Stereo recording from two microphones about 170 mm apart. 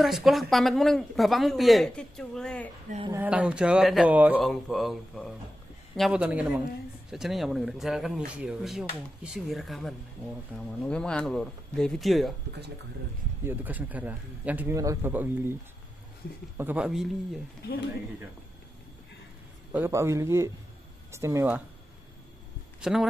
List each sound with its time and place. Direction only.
0.0 s speech: centre (ahead or behind)
3.1 s speech: 10° right (ahead or behind)
4.4 s speech: centre (ahead or behind)
13.5 s speech: 10° right (ahead or behind)
16.5 s speech: 10° right (ahead or behind)
19.7 s speech: 15° right (ahead or behind)
22.8 s speech: 5° right (ahead or behind)